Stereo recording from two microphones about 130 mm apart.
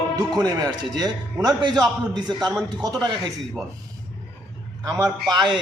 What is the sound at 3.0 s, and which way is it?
Speech, 30° right (ahead or behind).